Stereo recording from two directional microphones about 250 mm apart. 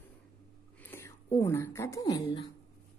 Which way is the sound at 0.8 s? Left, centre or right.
Centre.